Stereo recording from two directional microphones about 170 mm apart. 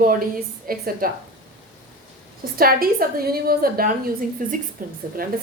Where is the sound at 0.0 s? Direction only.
55° right (ahead or behind).